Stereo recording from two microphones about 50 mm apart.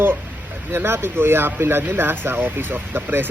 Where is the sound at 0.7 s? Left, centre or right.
Right.